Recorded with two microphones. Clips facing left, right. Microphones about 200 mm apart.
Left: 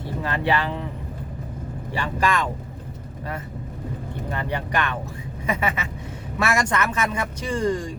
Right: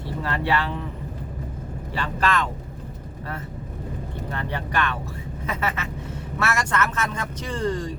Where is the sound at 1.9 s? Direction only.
15° left (ahead or behind).